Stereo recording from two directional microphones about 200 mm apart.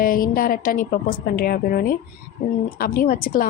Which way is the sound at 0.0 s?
45° left (ahead or behind).